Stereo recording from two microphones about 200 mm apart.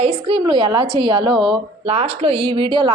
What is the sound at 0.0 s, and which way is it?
A woman's voice, 30° right (ahead or behind).